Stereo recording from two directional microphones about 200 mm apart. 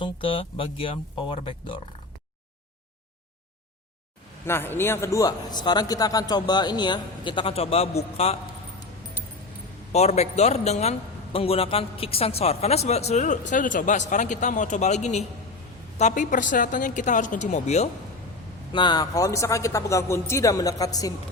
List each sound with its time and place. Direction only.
0.0 s speech: 25° left (ahead or behind)
4.4 s speech: 10° left (ahead or behind); by 8.4 s 30° left (ahead or behind)
9.9 s a man's voice: 35° left (ahead or behind)
18.7 s a man's voice: 25° left (ahead or behind)